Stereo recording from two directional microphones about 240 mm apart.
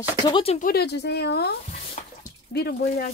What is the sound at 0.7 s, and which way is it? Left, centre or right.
Speech, left.